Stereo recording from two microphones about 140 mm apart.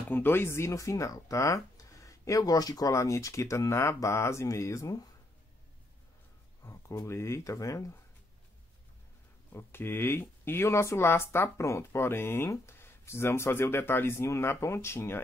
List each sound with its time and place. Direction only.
0.1 s speech: 15° left (ahead or behind)
6.6 s speech: 25° left (ahead or behind)
9.5 s speech: 15° left (ahead or behind)